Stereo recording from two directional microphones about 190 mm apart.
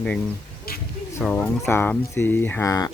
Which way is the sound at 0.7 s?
55° left (ahead or behind).